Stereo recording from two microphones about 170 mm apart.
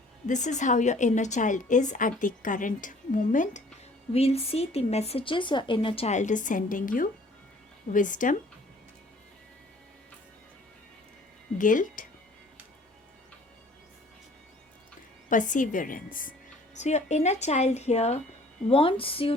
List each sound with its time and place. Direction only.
0.3 s a woman's voice: 45° left (ahead or behind)
4.1 s a woman's voice: 35° left (ahead or behind)
11.5 s a woman's voice: 50° left (ahead or behind)
15.3 s a woman's voice: 50° left (ahead or behind)
16.7 s a woman's voice: 40° left (ahead or behind)